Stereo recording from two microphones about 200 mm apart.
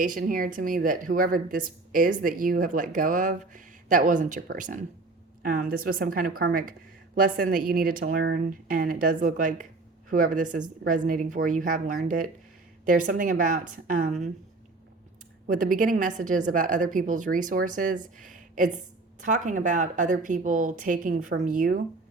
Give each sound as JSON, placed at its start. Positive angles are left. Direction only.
{"t": 0.0, "sound": "a woman's voice", "side_deg": -45}
{"t": 15.4, "sound": "a woman's voice", "side_deg": -40}